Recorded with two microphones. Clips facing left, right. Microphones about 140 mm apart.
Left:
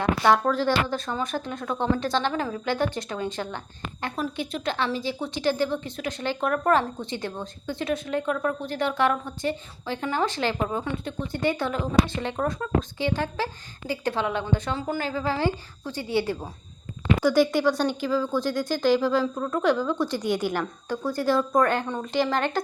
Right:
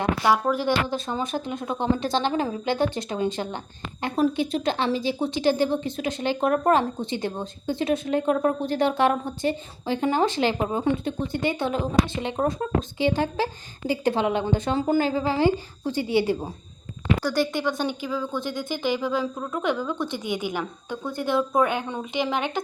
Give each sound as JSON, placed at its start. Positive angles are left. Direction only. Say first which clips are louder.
{"t": 0.3, "sound": "a woman's voice", "louder": "left 1 dB", "side_deg": -15}
{"t": 15.3, "sound": "a woman's voice", "louder": "right 4 dB", "side_deg": -10}
{"t": 17.2, "sound": "speech", "louder": "left 6 dB", "side_deg": 10}